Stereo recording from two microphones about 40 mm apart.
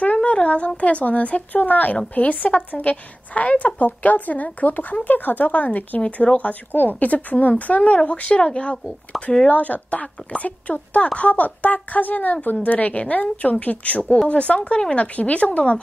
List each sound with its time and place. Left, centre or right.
0.0 s a woman's voice: left
6.7 s a woman's voice: left
8.0 s speech: left
9.1 s speech: centre
9.5 s a woman's voice: left